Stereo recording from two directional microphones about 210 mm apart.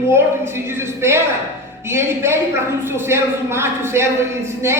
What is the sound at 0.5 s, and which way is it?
Speech, 10° right (ahead or behind).